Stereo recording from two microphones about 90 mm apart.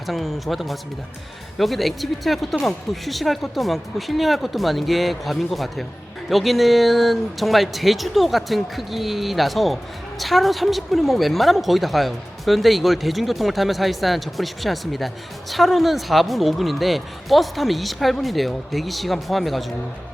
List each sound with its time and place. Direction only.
0.1 s a woman's voice: centre (ahead or behind)